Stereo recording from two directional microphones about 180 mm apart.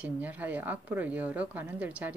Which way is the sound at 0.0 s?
10° right (ahead or behind).